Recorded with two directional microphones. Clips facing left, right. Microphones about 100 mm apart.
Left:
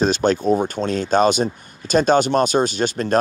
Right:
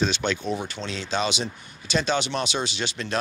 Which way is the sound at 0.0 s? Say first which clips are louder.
Left 8 dB; 45° left (ahead or behind).